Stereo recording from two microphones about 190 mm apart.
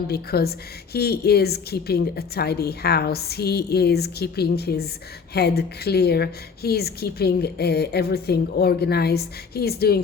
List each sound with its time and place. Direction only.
0.1 s a woman's voice: 55° left (ahead or behind)